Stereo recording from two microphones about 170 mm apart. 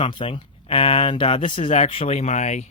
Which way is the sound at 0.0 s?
30° left (ahead or behind).